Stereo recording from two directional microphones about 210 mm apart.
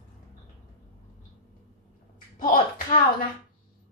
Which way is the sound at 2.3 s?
40° left (ahead or behind).